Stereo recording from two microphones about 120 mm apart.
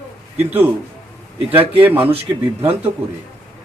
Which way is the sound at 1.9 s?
55° right (ahead or behind).